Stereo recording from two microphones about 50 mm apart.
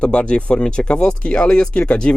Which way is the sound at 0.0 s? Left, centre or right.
Left.